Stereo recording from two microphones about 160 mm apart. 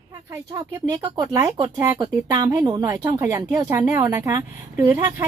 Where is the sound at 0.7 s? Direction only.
30° right (ahead or behind).